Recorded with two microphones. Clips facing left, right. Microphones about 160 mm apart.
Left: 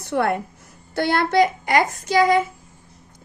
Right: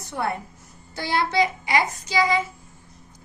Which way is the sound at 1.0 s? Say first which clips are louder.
Left 5 dB; 55° left (ahead or behind).